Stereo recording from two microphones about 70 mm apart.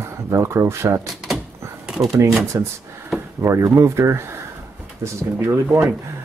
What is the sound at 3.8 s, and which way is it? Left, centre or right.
Speech, right.